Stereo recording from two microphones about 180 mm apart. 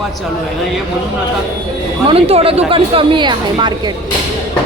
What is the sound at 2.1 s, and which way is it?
A woman's voice, 30° right (ahead or behind).